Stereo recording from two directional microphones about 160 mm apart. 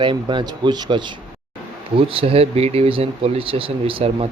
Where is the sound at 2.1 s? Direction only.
35° right (ahead or behind).